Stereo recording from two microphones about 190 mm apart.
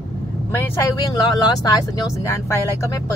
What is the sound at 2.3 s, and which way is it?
Speech, 15° left (ahead or behind).